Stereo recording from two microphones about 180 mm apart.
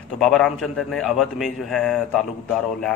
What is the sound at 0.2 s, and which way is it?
Speech, centre (ahead or behind).